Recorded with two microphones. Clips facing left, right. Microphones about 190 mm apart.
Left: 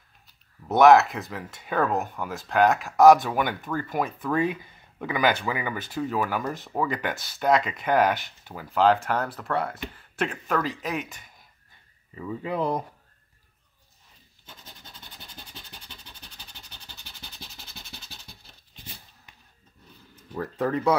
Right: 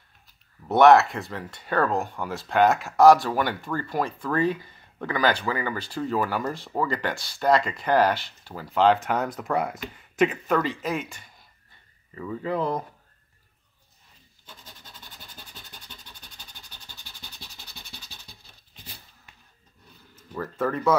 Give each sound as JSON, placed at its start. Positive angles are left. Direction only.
{"t": 0.7, "sound": "speech", "side_deg": 0}
{"t": 12.2, "sound": "speech", "side_deg": 15}
{"t": 20.2, "sound": "speech", "side_deg": 15}